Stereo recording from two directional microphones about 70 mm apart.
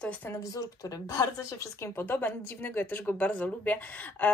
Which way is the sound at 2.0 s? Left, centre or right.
Left.